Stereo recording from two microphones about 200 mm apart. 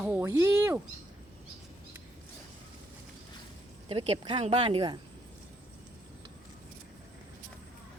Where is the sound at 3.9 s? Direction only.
30° right (ahead or behind).